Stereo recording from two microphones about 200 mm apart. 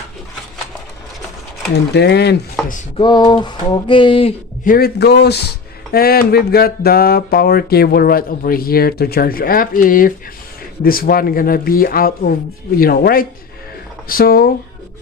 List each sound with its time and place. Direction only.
1.7 s a man's voice: 55° left (ahead or behind)
3.0 s a sound: 20° left (ahead or behind)
4.6 s a man's voice: 45° left (ahead or behind)